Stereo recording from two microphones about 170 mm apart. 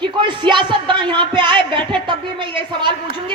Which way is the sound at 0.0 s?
25° right (ahead or behind).